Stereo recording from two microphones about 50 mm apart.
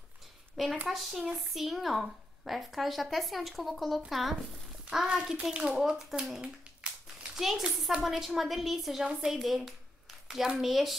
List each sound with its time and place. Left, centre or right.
0.8 s a woman's voice: centre
5.0 s a child's voice: centre
5.8 s a woman's voice: centre
9.3 s a sound: centre
10.6 s a woman's voice: centre